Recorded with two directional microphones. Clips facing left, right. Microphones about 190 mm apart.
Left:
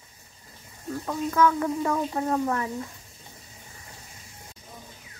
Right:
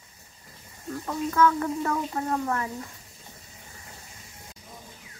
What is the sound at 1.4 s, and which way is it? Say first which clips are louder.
Child singing: even; 15° left (ahead or behind).